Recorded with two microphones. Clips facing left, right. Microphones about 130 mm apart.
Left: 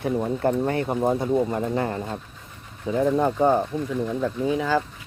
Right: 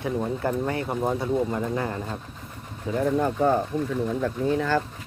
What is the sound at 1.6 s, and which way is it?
Speech, 35° left (ahead or behind).